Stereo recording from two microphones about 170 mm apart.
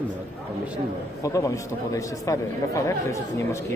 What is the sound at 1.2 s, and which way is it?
Speech, 20° left (ahead or behind).